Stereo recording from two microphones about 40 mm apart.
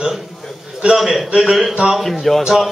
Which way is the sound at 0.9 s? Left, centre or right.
Centre.